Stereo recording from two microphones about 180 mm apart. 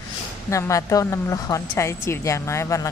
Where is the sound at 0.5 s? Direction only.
15° left (ahead or behind).